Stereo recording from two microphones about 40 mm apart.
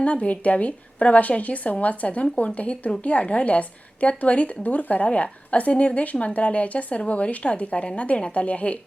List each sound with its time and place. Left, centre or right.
0.0 s a woman's voice: left